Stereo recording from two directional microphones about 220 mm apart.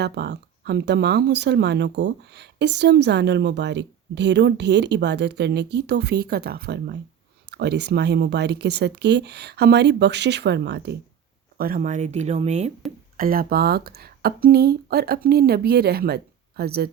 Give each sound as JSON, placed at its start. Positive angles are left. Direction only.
{"t": 0.0, "sound": "speech", "side_deg": -50}
{"t": 13.1, "sound": "speech", "side_deg": -40}